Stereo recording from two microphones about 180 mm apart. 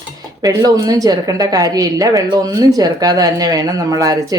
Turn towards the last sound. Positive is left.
turn(degrees=-20)  # may be behind; listen again after turning